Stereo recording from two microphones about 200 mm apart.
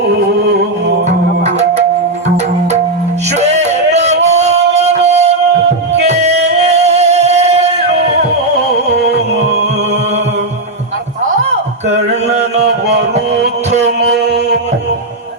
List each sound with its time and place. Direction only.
3.3 s music: 35° right (ahead or behind)
13.7 s music: 35° right (ahead or behind)